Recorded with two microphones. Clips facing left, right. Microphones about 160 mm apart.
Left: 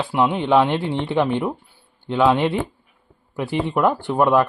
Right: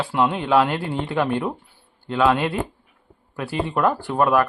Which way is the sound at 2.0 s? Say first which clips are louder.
Left 2 dB; 20° left (ahead or behind).